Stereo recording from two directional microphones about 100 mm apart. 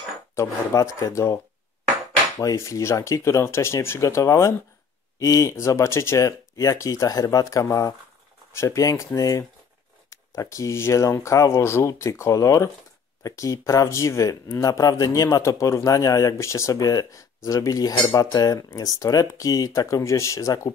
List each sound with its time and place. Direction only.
0.4 s speech: 30° left (ahead or behind)
2.4 s speech: 30° left (ahead or behind)